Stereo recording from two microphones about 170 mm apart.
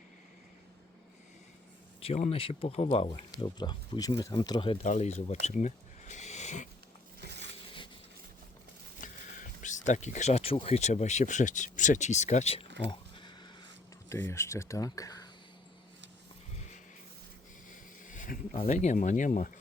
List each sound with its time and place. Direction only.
2.0 s speech: 35° left (ahead or behind)
4.8 s speech: 40° left (ahead or behind)
7.2 s a sound: 85° right
9.0 s speech: 50° left (ahead or behind)
12.6 s speech: 90° right
12.9 s horse: 25° left (ahead or behind)
14.1 s speech: 15° left (ahead or behind)
17.7 s speech: 50° left (ahead or behind)